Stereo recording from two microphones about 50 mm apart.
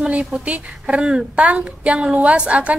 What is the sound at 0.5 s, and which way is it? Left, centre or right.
A woman's voice, right.